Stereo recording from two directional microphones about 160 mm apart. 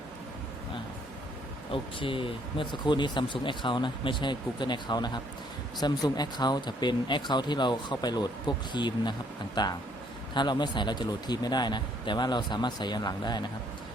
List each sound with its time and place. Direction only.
1.7 s speech: 35° left (ahead or behind)